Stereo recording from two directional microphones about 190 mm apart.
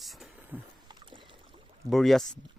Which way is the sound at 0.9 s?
25° right (ahead or behind).